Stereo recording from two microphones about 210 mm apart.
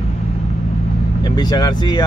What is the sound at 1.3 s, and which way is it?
Speech, 20° left (ahead or behind).